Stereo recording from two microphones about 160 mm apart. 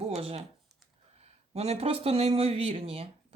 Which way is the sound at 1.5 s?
40° right (ahead or behind).